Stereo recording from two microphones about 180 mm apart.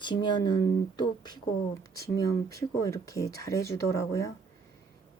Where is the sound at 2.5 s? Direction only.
20° left (ahead or behind).